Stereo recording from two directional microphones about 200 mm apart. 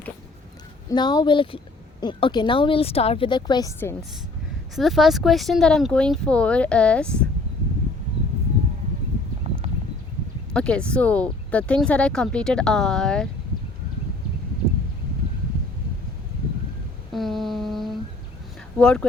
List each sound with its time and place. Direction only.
0.9 s speech: 20° left (ahead or behind)
4.7 s speech: centre (ahead or behind)
9.5 s clip-clop: 25° right (ahead or behind)
10.5 s speech: 5° left (ahead or behind)
17.1 s a sound: centre (ahead or behind)
18.8 s speech: 5° left (ahead or behind)